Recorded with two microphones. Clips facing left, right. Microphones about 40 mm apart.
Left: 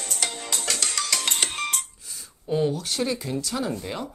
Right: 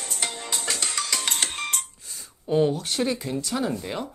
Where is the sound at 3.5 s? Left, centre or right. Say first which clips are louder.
Right 4 dB; centre.